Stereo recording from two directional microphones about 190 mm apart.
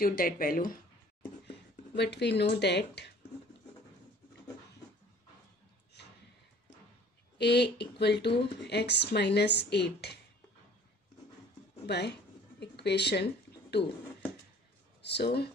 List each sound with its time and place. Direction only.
0.0 s speech: 50° left (ahead or behind)
2.0 s speech: 60° left (ahead or behind)
6.0 s a sound: 60° left (ahead or behind)
7.3 s speech: 60° left (ahead or behind)
11.8 s a sound: 60° left (ahead or behind)
15.0 s speech: 60° left (ahead or behind)